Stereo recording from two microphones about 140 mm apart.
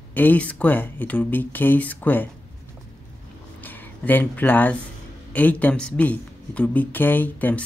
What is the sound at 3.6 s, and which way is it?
Speech, 15° left (ahead or behind).